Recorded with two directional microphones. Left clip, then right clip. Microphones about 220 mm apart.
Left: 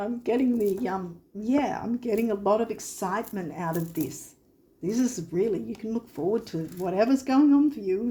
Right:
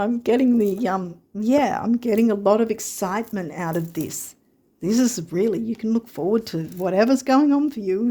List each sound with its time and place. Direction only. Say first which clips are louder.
0.0 s speech: right 7 dB; 55° right (ahead or behind)